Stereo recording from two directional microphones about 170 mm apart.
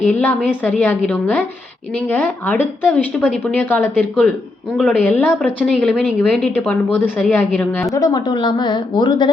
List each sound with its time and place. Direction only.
0.1 s a woman's voice: 10° left (ahead or behind)
7.8 s a woman's voice: 20° left (ahead or behind)